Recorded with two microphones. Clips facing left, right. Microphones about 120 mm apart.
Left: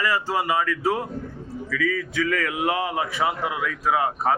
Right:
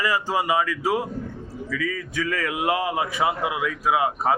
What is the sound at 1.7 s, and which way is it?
Speech, 25° right (ahead or behind).